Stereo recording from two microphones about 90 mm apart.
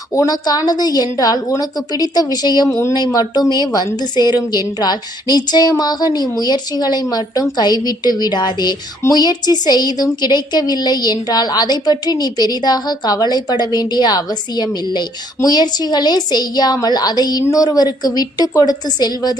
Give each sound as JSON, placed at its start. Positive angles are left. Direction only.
{"t": 0.1, "sound": "a woman's voice", "side_deg": 40}
{"t": 2.6, "sound": "speech", "side_deg": 30}
{"t": 2.9, "sound": "a woman's voice", "side_deg": 45}